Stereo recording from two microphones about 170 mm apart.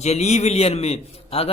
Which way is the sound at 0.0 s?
40° left (ahead or behind).